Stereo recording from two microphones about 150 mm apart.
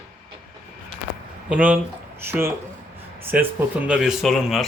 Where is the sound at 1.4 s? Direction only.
10° right (ahead or behind).